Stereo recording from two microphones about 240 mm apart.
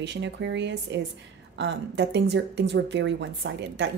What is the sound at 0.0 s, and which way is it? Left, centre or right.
Speech, right.